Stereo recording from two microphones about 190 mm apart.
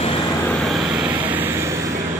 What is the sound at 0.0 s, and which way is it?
Vehicle, 30° left (ahead or behind).